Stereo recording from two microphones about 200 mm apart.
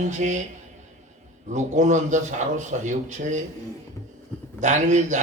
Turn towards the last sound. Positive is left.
turn(degrees=-35)  # may be behind; listen again after turning